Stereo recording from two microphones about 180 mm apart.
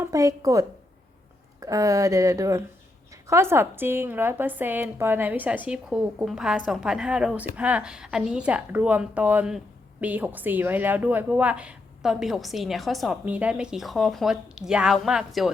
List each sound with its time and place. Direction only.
0.0 s a woman's voice: 20° right (ahead or behind); by 15.4 s centre (ahead or behind)